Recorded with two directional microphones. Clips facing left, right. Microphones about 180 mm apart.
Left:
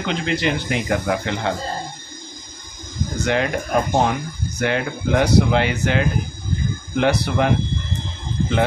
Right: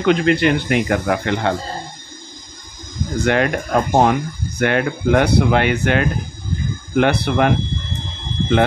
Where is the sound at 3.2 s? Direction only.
60° right (ahead or behind).